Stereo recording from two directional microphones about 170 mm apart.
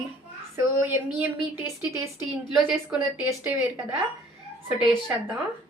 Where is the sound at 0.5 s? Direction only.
10° right (ahead or behind).